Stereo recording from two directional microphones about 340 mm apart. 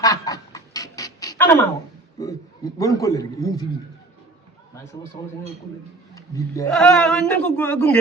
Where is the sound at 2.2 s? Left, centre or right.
Centre.